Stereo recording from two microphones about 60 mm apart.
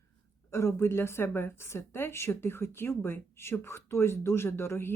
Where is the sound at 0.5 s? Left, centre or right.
Left.